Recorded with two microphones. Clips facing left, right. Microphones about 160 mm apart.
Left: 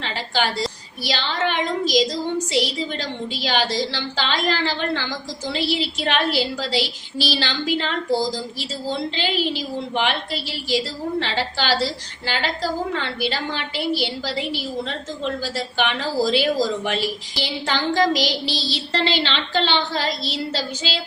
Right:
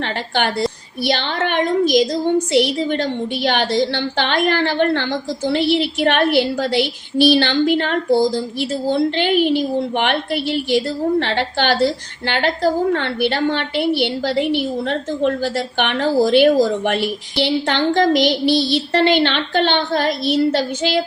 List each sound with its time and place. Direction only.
0.0 s a woman's voice: 55° right (ahead or behind)